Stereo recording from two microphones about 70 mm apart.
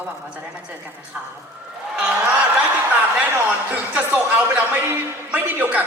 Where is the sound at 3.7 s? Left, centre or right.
Right.